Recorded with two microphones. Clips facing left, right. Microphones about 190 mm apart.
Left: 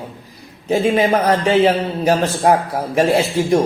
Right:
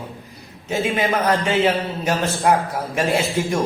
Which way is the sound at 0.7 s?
35° left (ahead or behind).